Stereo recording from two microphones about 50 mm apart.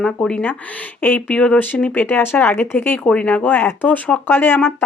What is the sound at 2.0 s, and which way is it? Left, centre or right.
Speech, left.